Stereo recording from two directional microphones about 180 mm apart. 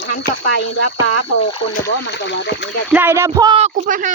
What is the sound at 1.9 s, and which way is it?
Speech, 75° left (ahead or behind).